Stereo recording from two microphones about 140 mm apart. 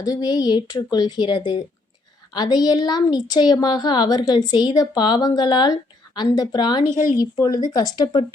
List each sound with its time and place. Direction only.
0.0 s a woman's voice: 25° left (ahead or behind)
6.8 s speech: 70° left (ahead or behind)
7.2 s a woman's voice: 30° left (ahead or behind)